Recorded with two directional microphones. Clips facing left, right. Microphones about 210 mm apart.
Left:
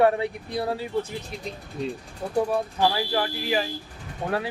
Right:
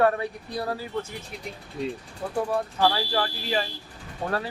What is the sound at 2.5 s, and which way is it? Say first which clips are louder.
A man's voice: even; 10° left (ahead or behind).